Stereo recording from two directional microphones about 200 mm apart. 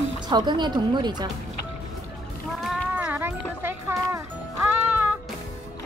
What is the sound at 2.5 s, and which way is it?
Music, 5° right (ahead or behind).